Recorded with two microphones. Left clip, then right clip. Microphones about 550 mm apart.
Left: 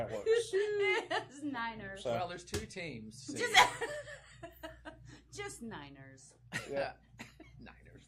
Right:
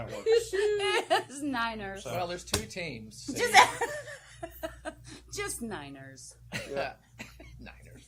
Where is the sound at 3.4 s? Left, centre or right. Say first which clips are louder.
Right 6 dB; right.